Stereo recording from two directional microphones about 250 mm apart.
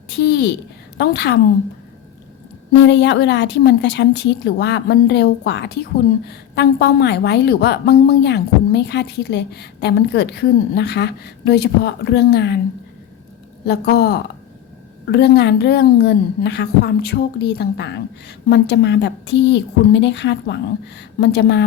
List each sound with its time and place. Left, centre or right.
0.2 s a sound: left
0.9 s a woman's voice: left
2.8 s speech: left
13.7 s a woman's voice: left